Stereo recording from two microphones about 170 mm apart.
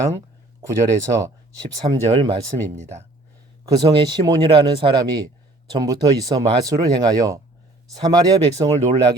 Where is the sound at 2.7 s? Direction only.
40° right (ahead or behind).